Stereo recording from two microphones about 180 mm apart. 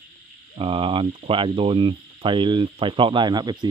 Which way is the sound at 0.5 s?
30° right (ahead or behind).